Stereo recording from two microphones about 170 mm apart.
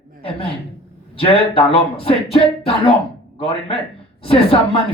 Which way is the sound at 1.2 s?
30° left (ahead or behind).